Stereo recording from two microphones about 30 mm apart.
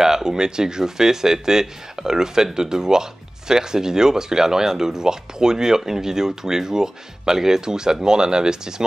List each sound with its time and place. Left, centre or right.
0.0 s speech: centre